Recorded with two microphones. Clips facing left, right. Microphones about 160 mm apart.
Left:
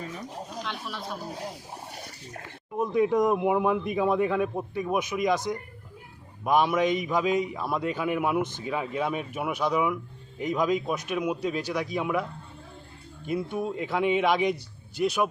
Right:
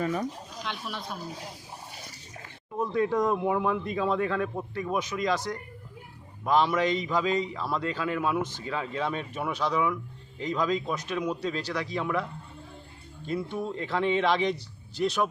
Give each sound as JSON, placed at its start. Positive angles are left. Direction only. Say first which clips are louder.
{"t": 0.0, "sound": "speech", "louder": "right 9 dB", "side_deg": -65}
{"t": 0.6, "sound": "speech", "louder": "right 3 dB", "side_deg": 0}
{"t": 2.7, "sound": "speech", "louder": "left 3 dB", "side_deg": 15}
{"t": 13.2, "sound": "speech", "louder": "left 2 dB", "side_deg": 10}